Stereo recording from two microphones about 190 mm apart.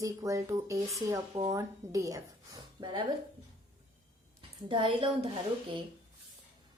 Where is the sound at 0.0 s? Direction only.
15° right (ahead or behind).